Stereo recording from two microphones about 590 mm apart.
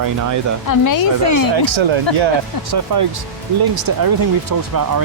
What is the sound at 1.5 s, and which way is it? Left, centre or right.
Speech, right.